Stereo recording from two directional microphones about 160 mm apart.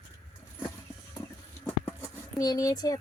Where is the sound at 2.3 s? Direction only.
20° left (ahead or behind).